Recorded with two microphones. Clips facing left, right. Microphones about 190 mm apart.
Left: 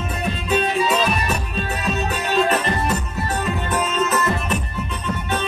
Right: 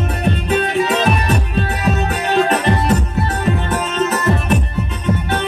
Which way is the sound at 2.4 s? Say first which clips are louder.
Right 4 dB; 70° right (ahead or behind).